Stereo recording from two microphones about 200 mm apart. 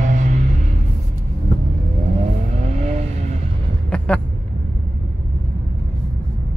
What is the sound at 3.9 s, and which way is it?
Vehicle, 5° left (ahead or behind).